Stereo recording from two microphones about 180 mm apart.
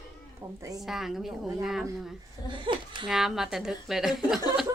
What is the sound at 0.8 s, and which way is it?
A woman's voice, centre (ahead or behind).